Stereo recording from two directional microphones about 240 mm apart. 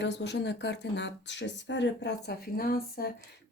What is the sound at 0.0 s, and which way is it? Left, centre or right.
Speech, left.